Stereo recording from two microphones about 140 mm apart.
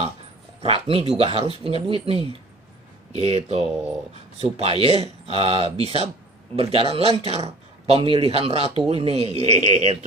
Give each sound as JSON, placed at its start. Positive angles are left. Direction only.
{"t": 0.6, "sound": "a man's voice", "side_deg": -45}
{"t": 3.1, "sound": "a man's voice", "side_deg": -50}